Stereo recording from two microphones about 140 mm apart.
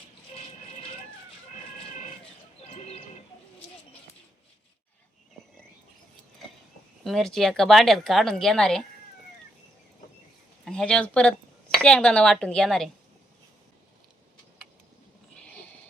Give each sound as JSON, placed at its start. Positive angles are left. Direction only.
{"t": 2.7, "sound": "bird", "side_deg": 50}
{"t": 7.0, "sound": "speech", "side_deg": 0}
{"t": 10.7, "sound": "speech", "side_deg": 5}